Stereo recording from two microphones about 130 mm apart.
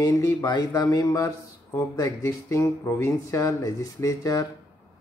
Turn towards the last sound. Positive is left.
turn(degrees=25)  # may be behind; listen again after turning